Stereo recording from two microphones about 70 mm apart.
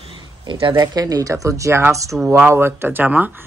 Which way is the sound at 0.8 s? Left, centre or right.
Right.